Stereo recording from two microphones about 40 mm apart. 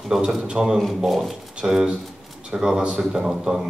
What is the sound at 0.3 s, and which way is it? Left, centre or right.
Speech, centre.